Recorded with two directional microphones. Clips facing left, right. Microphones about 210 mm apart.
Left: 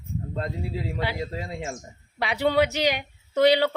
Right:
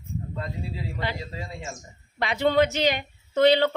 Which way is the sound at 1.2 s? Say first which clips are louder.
Left 5 dB; 55° left (ahead or behind).